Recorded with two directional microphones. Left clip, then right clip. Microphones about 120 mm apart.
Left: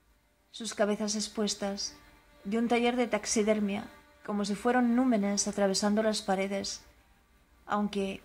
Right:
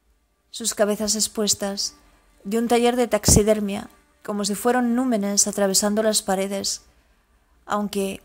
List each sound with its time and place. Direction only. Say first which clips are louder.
0.6 s a woman's voice: right 8 dB; 40° right (ahead or behind)
7.6 s a woman's voice: right 7 dB; 45° right (ahead or behind)